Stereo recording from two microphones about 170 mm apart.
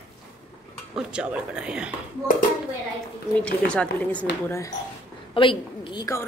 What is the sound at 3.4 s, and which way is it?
A woman's voice, 5° left (ahead or behind).